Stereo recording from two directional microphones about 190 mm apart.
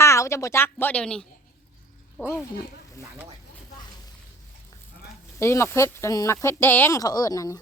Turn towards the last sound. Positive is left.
turn(degrees=20)  # may be behind; listen again after turning